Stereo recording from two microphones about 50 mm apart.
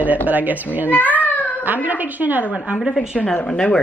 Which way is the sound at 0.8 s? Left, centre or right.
Left.